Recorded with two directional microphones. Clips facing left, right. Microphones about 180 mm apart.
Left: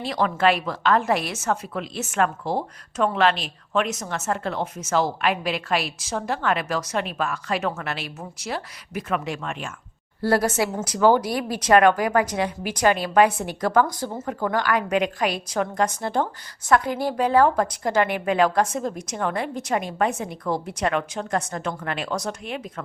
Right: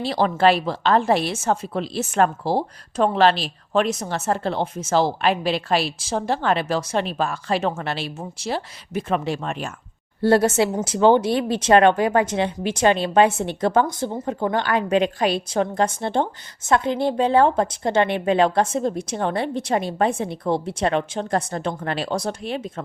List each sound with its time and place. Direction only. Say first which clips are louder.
0.0 s a woman's voice: right 3 dB; 30° right (ahead or behind)